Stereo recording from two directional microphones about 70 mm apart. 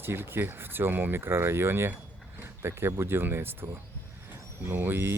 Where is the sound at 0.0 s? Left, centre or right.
Right.